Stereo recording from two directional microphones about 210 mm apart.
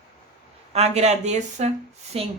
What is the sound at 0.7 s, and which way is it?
A woman's voice, 30° right (ahead or behind).